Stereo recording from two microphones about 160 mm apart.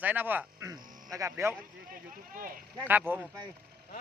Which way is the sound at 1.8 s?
60° right (ahead or behind).